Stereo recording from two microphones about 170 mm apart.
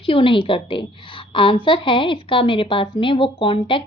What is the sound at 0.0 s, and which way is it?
A woman's voice, 30° left (ahead or behind).